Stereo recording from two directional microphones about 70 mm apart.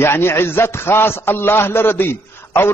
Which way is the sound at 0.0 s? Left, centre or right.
Left.